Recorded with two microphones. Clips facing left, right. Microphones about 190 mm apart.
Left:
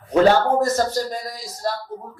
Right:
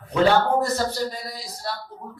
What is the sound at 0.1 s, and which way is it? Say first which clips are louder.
Speech: left 3 dB; 45° left (ahead or behind).